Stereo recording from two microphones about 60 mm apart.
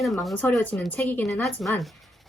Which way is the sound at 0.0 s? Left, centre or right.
Centre.